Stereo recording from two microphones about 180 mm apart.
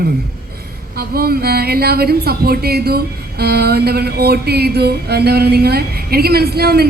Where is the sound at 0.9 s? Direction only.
60° right (ahead or behind).